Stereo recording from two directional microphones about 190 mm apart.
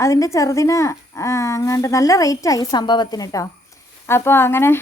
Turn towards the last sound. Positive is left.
turn(degrees=10)  # may be behind; listen again after turning